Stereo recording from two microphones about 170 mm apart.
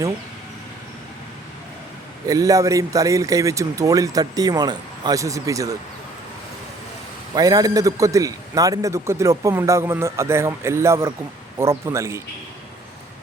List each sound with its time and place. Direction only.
2.2 s speech: 20° right (ahead or behind)
7.3 s a man's voice: 20° right (ahead or behind)